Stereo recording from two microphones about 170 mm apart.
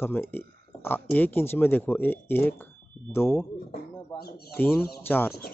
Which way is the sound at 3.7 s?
65° left (ahead or behind).